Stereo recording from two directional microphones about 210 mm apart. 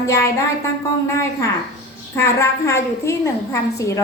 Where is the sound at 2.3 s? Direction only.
15° left (ahead or behind).